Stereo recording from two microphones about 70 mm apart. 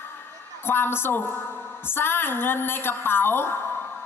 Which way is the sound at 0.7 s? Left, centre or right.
Left.